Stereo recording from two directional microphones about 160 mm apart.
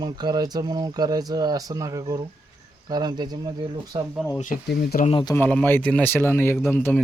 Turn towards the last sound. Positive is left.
turn(degrees=15)  # may be behind; listen again after turning